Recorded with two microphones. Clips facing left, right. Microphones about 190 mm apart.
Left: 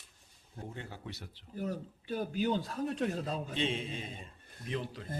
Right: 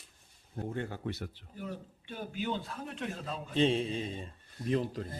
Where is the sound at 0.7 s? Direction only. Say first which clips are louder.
Right 8 dB; 55° right (ahead or behind).